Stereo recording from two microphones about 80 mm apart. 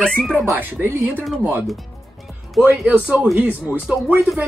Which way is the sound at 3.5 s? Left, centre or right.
Right.